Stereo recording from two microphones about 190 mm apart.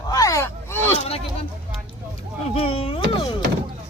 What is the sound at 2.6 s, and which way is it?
Speech, 30° left (ahead or behind).